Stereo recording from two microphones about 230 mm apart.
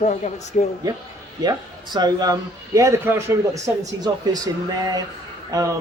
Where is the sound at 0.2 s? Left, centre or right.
Left.